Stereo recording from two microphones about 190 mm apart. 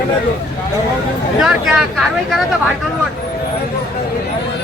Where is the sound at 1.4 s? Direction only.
Centre (ahead or behind).